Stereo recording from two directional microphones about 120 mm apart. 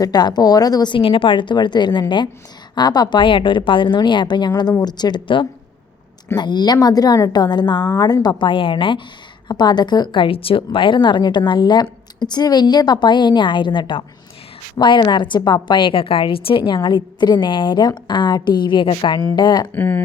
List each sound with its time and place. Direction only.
0.0 s a woman's voice: 35° left (ahead or behind)
19.7 s speech: 15° left (ahead or behind)